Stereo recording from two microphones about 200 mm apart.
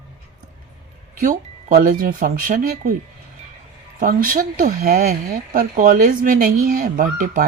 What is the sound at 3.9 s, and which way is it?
Speech, 45° right (ahead or behind).